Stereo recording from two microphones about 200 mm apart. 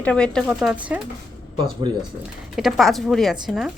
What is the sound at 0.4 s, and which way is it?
Speech, 5° right (ahead or behind).